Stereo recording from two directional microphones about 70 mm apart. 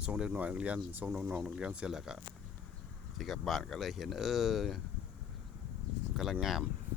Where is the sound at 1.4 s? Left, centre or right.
Centre.